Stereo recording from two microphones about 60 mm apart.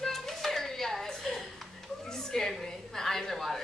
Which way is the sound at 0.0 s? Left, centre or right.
Centre.